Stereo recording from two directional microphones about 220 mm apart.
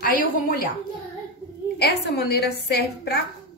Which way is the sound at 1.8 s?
50° left (ahead or behind).